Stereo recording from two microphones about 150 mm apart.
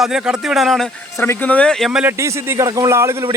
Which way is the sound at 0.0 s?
5° right (ahead or behind).